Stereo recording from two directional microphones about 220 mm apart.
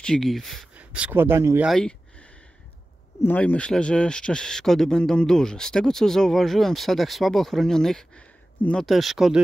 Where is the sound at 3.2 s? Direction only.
10° left (ahead or behind).